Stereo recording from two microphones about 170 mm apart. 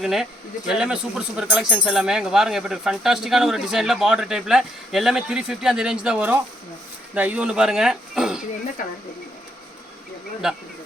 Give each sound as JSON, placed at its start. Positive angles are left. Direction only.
{"t": 0.0, "sound": "speech", "side_deg": 0}
{"t": 8.8, "sound": "speech", "side_deg": 50}